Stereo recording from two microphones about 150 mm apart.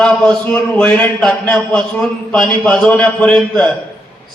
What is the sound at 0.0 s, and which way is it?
A man's voice, 5° left (ahead or behind).